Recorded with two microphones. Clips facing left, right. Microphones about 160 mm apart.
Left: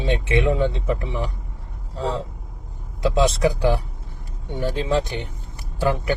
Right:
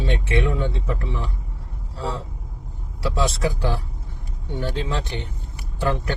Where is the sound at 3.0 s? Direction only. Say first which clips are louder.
Left 5 dB; 20° left (ahead or behind).